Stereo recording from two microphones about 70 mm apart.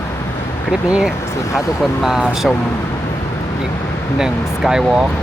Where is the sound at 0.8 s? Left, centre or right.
Centre.